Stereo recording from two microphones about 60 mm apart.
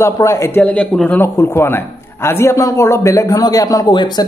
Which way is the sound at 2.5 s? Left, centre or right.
Left.